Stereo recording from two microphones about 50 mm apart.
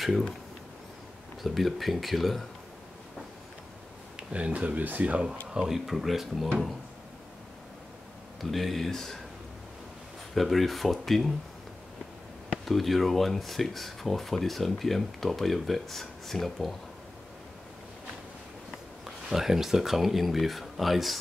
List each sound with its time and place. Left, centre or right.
1.4 s speech: centre
4.2 s speech: right
5.5 s speech: centre
8.4 s speech: centre
10.3 s speech: centre
12.6 s speech: centre
19.2 s speech: centre